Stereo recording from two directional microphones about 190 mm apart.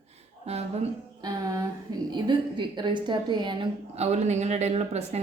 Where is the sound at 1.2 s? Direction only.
20° right (ahead or behind).